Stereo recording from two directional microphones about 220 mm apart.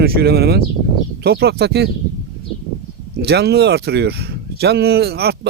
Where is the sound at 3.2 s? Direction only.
50° right (ahead or behind).